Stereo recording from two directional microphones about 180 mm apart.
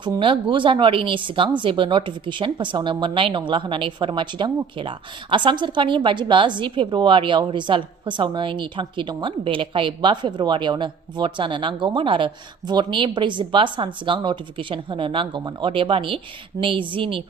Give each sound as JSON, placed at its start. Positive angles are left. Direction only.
{"t": 0.0, "sound": "a woman's voice", "side_deg": -25}